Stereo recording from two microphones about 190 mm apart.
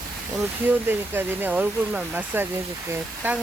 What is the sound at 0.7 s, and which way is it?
Speech, 10° right (ahead or behind).